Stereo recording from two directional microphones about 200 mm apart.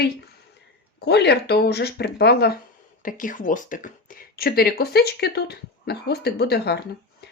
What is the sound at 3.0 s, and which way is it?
Speech, 40° left (ahead or behind).